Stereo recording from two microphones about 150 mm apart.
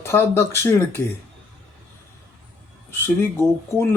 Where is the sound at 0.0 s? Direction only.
15° left (ahead or behind).